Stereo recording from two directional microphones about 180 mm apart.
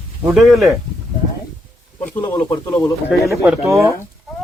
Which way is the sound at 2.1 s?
10° left (ahead or behind).